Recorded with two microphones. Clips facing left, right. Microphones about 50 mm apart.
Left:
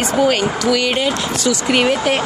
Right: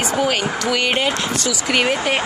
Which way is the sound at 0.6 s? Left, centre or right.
Right.